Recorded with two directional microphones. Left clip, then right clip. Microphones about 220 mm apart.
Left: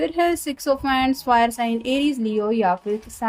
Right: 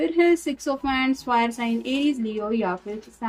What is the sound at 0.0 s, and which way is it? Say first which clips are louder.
Speech: right 1 dB; 55° left (ahead or behind).